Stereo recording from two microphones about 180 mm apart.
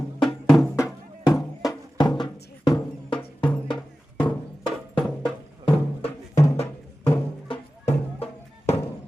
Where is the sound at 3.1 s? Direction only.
5° left (ahead or behind).